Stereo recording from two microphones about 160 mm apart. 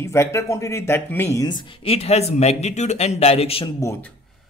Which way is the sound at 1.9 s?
40° left (ahead or behind).